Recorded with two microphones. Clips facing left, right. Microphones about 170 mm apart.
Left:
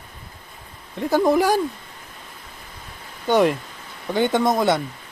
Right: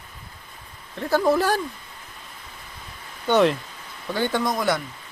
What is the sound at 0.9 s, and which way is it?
Speech, 15° left (ahead or behind).